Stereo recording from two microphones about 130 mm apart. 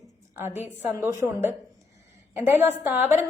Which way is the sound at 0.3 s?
15° right (ahead or behind).